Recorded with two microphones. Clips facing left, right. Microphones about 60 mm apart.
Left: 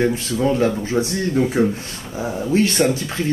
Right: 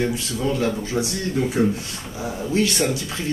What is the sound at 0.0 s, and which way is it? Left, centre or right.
Speech, left.